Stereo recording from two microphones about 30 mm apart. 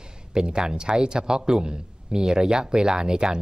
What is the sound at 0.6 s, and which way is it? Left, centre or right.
Speech, right.